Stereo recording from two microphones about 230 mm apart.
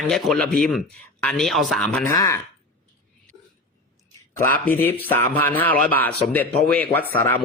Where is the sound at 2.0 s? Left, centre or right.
Centre.